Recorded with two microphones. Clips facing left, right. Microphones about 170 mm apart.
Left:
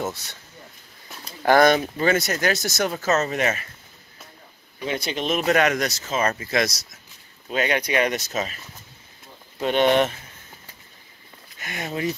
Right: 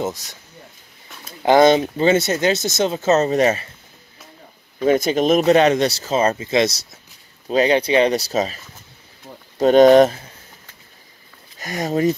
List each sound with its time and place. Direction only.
0.0 s speech: 10° right (ahead or behind)
1.4 s speech: 20° right (ahead or behind)
4.7 s speech: 45° right (ahead or behind)
9.6 s speech: 40° right (ahead or behind)
11.5 s speech: 40° right (ahead or behind)